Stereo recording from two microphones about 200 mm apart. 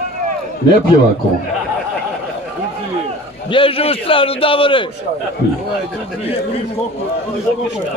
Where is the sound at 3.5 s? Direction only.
25° left (ahead or behind).